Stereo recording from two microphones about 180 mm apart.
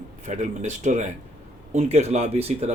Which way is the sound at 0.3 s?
40° right (ahead or behind).